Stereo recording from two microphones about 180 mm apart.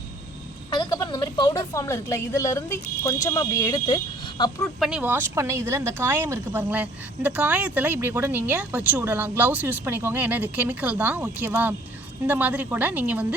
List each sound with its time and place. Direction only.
0.7 s a woman's voice: 20° left (ahead or behind)
4.8 s speech: 5° right (ahead or behind)